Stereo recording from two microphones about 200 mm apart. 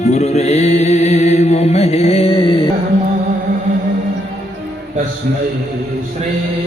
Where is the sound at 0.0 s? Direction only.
35° left (ahead or behind).